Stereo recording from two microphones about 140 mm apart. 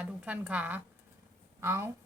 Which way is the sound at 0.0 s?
10° right (ahead or behind).